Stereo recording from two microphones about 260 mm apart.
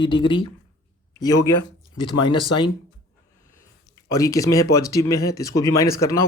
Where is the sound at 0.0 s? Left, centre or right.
Centre.